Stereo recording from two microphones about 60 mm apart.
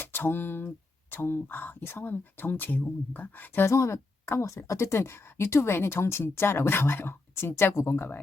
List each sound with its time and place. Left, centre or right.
0.0 s speech: left
3.7 s a woman's voice: left